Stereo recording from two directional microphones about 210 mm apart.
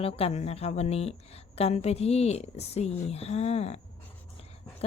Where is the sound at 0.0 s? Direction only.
30° left (ahead or behind).